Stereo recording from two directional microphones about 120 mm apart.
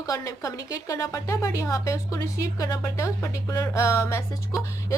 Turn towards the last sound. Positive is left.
turn(degrees=25)  # may be behind; listen again after turning